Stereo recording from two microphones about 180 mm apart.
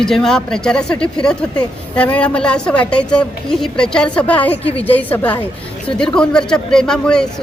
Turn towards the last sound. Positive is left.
turn(degrees=5)  # may be behind; listen again after turning